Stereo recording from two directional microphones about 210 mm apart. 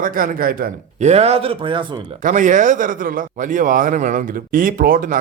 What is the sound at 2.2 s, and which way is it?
Speech, 35° right (ahead or behind).